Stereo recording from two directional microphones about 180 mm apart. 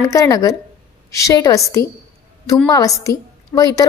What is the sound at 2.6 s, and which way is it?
A woman's voice, 20° left (ahead or behind).